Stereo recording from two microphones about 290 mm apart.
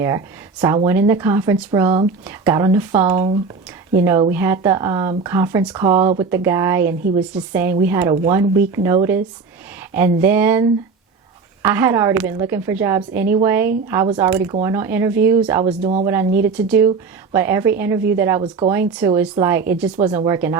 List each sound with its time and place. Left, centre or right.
0.6 s speech: centre
15.8 s speech: right
16.4 s speech: centre